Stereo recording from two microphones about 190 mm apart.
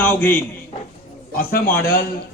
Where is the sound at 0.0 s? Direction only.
10° left (ahead or behind).